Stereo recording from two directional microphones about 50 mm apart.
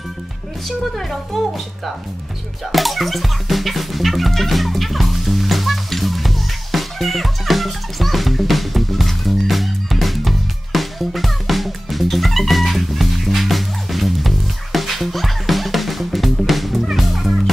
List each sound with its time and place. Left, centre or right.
0.7 s speech: centre
2.7 s music: centre